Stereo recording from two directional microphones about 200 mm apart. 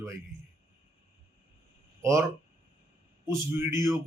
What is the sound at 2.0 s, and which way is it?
Speech, 15° right (ahead or behind).